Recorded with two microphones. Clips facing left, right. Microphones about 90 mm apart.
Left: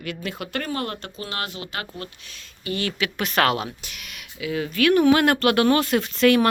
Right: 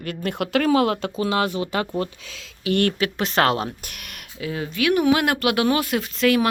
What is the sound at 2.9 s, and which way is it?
Speech, 35° right (ahead or behind).